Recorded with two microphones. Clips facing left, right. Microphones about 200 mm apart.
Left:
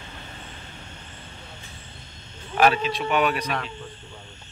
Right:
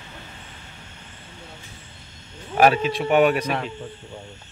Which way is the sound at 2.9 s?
50° right (ahead or behind).